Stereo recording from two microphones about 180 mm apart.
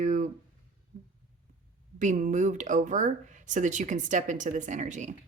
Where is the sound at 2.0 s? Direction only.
45° right (ahead or behind).